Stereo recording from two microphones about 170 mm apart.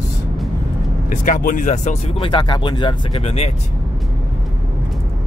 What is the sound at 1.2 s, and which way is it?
Speech, 50° left (ahead or behind).